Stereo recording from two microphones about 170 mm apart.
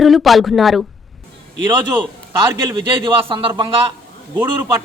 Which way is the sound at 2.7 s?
30° right (ahead or behind).